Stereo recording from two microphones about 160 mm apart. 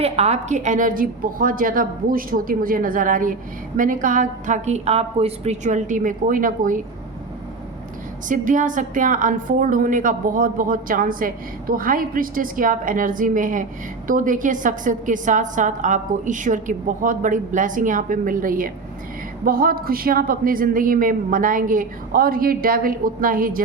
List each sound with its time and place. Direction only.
0.0 s a woman's voice: 40° right (ahead or behind); by 6.8 s 55° right (ahead or behind)
8.3 s a woman's voice: 55° right (ahead or behind)